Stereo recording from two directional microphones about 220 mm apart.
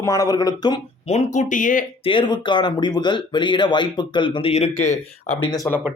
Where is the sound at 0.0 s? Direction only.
15° left (ahead or behind).